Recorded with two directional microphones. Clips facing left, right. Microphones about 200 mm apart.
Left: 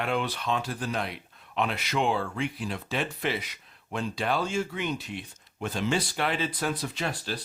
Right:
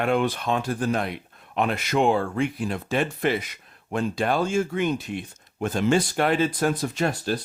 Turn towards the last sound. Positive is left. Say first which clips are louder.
# right 8 dB
turn(degrees=-45)  # may be behind; listen again after turning